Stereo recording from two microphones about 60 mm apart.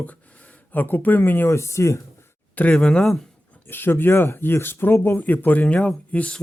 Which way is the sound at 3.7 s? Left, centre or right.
Left.